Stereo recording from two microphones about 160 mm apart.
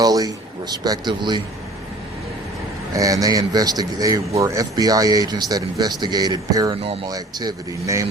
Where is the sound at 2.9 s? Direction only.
20° right (ahead or behind).